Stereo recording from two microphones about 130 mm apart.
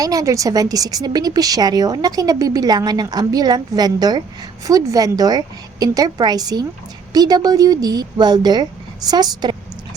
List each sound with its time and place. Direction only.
0.0 s a woman's voice: 25° right (ahead or behind)